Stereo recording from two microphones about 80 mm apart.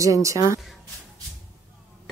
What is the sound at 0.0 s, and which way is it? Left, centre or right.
Speech, right.